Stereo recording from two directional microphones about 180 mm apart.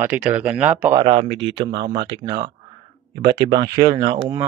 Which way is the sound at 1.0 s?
35° right (ahead or behind).